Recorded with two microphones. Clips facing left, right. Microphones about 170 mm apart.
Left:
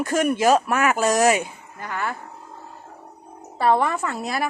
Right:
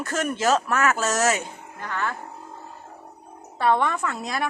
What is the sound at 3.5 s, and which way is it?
Speech, 5° left (ahead or behind).